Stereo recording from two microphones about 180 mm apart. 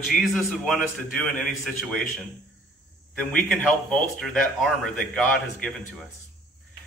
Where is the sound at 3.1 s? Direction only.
5° left (ahead or behind).